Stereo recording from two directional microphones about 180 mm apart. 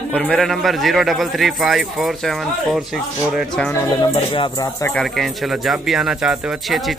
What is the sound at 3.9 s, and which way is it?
Speech, 25° left (ahead or behind).